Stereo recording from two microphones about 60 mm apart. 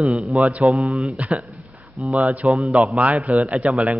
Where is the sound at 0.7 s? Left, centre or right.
Right.